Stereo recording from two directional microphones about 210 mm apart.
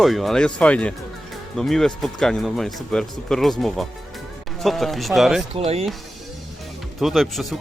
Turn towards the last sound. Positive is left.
turn(degrees=0)  # may be behind; listen again after turning